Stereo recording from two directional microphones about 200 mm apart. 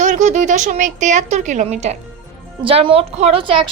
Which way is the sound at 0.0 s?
35° right (ahead or behind).